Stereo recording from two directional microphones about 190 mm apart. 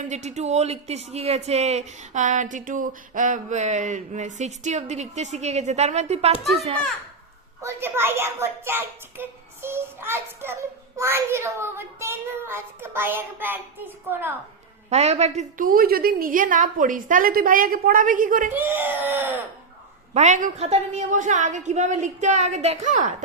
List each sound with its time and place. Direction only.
0.1 s speech: 35° right (ahead or behind)
7.6 s a child's voice: 15° right (ahead or behind)
14.8 s a woman's voice: 35° right (ahead or behind)
18.5 s a child's voice: 10° right (ahead or behind)
20.1 s speech: 40° right (ahead or behind)